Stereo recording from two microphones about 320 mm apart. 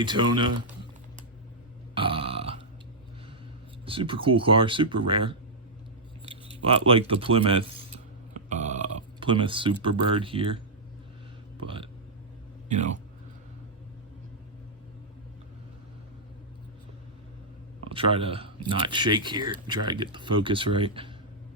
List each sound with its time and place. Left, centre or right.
0.0 s speech: centre
2.0 s burping: centre
3.8 s speech: centre
6.7 s a sound: centre
9.8 s speech: centre
11.6 s speech: centre
17.8 s speech: centre